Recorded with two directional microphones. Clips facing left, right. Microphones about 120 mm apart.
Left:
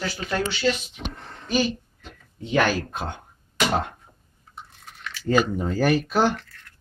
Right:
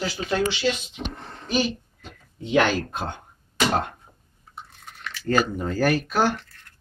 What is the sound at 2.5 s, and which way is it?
Speech, 5° left (ahead or behind).